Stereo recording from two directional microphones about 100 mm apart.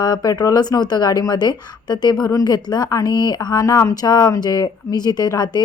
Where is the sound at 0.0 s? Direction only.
40° left (ahead or behind).